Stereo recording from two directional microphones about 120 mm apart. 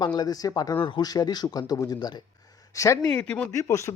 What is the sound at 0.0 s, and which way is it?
Speech, 35° left (ahead or behind).